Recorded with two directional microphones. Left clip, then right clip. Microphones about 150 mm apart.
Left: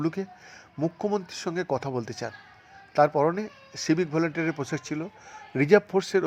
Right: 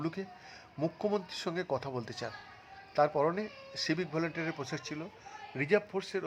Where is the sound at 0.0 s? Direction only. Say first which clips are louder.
Left 8 dB; 25° left (ahead or behind).